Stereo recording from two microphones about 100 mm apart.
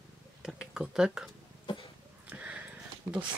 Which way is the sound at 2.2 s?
15° right (ahead or behind).